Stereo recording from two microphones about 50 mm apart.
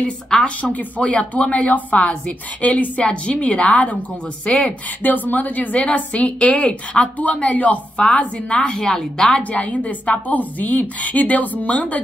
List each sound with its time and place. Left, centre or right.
0.4 s speech: left
5.0 s a woman's voice: left; by 9.4 s centre
9.4 s a woman's voice: left